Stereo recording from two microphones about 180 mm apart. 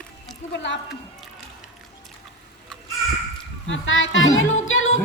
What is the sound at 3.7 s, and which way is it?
Speech, 90° left.